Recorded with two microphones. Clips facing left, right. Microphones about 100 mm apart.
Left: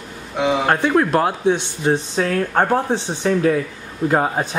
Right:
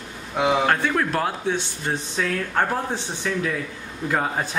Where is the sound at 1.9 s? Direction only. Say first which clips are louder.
Left 7 dB; 40° left (ahead or behind).